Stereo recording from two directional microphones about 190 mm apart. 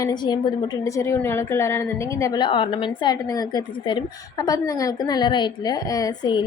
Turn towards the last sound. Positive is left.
turn(degrees=20)  # may be behind; listen again after turning